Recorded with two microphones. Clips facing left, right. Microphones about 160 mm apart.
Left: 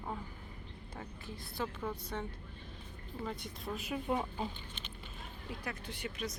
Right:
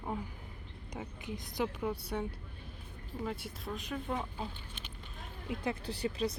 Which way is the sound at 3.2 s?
Centre (ahead or behind).